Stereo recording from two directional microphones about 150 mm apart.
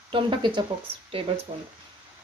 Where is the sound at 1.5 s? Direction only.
45° right (ahead or behind).